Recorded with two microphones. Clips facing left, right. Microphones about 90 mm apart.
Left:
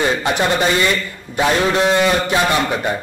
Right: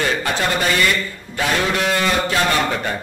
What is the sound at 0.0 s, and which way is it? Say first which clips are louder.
A man's voice: left 3 dB; 20° left (ahead or behind).